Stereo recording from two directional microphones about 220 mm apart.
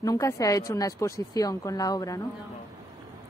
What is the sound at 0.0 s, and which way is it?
A woman's voice, 15° left (ahead or behind).